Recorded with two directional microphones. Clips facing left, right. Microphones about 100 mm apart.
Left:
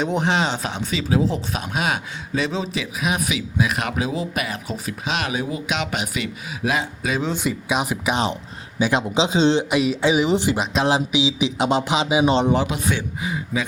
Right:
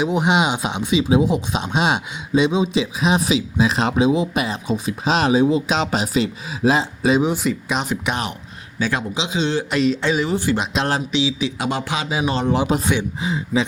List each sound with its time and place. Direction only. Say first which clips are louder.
0.0 s speech: right 3 dB; 10° right (ahead or behind)
5.0 s speech: right 9 dB; 35° right (ahead or behind)
7.3 s speech: even; centre (ahead or behind)
8.8 s speech: left 2 dB; 20° left (ahead or behind)
9.1 s speech: left 4 dB; 30° left (ahead or behind)
9.6 s speech: even; 10° left (ahead or behind)
10.6 s speech: left 1 dB; centre (ahead or behind)
10.9 s speech: left 1 dB; 15° left (ahead or behind)
12.6 s speech: right 6 dB; 35° right (ahead or behind)
12.9 s speech: right 3 dB; 20° right (ahead or behind)